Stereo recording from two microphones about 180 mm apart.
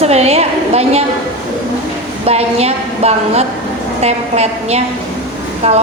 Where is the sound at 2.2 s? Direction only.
35° right (ahead or behind).